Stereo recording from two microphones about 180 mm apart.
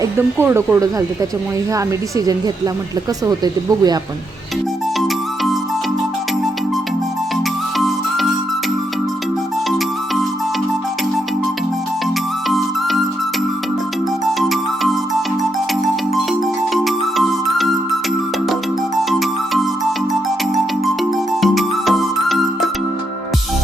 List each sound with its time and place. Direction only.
0.0 s speech: 10° right (ahead or behind)
4.9 s music: centre (ahead or behind)
7.8 s music: centre (ahead or behind)
12.5 s music: centre (ahead or behind)
14.5 s music: centre (ahead or behind)
16.7 s music: centre (ahead or behind)
18.9 s music: centre (ahead or behind)
20.8 s music: centre (ahead or behind)